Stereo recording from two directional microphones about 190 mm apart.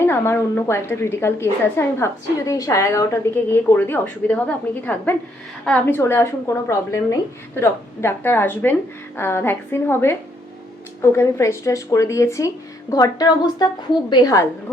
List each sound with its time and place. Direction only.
0.0 s a woman's voice: 10° left (ahead or behind)